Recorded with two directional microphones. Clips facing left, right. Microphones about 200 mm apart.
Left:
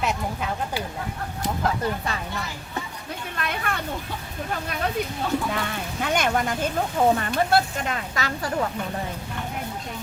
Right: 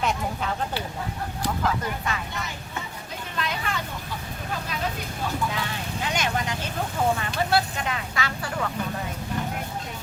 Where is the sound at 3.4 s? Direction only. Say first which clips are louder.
Even; 55° left (ahead or behind).